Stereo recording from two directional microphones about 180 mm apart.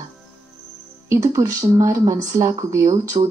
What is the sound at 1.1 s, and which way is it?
Speech, 20° right (ahead or behind).